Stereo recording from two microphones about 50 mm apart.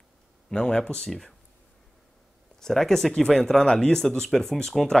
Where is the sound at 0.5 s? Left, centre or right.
Centre.